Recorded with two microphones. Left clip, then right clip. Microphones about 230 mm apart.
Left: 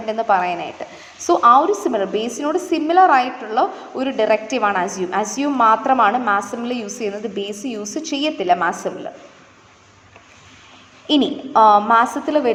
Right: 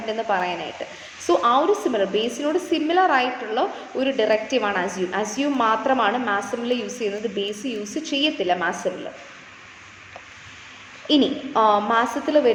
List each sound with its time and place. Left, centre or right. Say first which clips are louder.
0.1 s a woman's voice: left 6 dB; left
11.1 s a woman's voice: left 3 dB; left